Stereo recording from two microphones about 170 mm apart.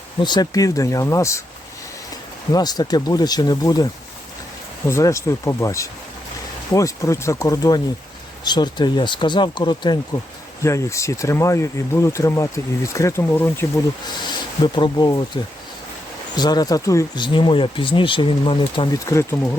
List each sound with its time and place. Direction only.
0.2 s speech: 25° left (ahead or behind)
2.5 s speech: 25° left (ahead or behind)
4.9 s speech: 15° left (ahead or behind)
14.1 s speech: 25° left (ahead or behind)
16.3 s speech: 25° left (ahead or behind)
19.0 s speech: 15° left (ahead or behind)